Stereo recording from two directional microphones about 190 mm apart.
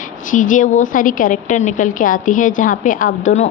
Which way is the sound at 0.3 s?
45° left (ahead or behind).